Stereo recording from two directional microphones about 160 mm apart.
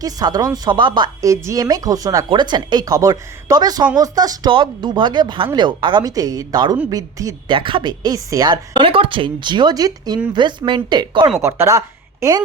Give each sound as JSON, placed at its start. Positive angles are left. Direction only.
{"t": 0.0, "sound": "a woman's voice", "side_deg": -25}
{"t": 11.3, "sound": "speech", "side_deg": -15}